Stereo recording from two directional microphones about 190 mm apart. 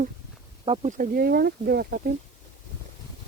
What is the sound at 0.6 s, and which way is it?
Speech, 35° right (ahead or behind).